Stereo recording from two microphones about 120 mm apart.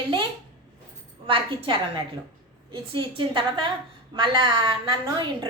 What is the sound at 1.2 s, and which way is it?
A woman's voice, 45° right (ahead or behind).